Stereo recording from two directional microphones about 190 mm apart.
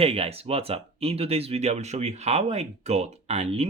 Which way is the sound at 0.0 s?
30° right (ahead or behind).